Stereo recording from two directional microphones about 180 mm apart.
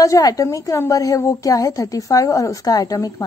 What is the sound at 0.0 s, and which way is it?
A woman's voice, 20° left (ahead or behind).